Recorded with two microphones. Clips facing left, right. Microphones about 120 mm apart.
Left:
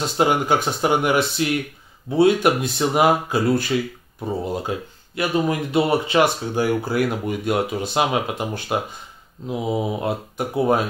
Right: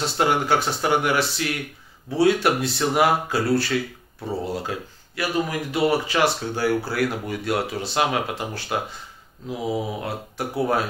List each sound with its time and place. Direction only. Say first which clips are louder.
0.0 s speech: left 2 dB; 15° left (ahead or behind)